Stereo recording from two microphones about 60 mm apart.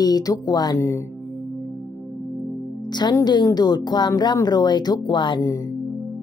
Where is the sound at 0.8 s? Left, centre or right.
Left.